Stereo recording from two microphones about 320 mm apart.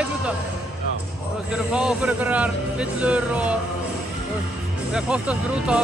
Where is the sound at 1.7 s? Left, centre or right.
Centre.